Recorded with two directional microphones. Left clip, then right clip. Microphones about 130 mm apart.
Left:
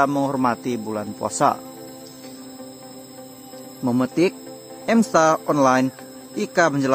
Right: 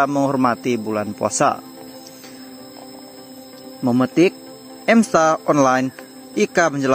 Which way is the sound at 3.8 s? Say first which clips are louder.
Right 4 dB; 35° right (ahead or behind).